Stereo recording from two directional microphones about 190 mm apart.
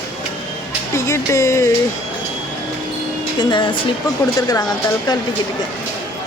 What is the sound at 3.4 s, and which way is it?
Speech, 25° left (ahead or behind).